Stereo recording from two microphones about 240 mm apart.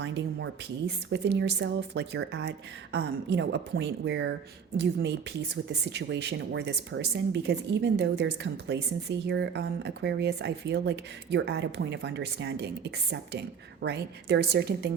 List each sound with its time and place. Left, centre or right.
0.0 s speech: right
5.6 s speech: right